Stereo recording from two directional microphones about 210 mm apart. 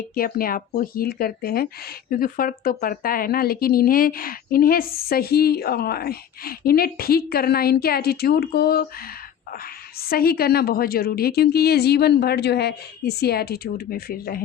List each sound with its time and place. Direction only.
0.1 s speech: 45° left (ahead or behind)
10.0 s speech: 45° left (ahead or behind)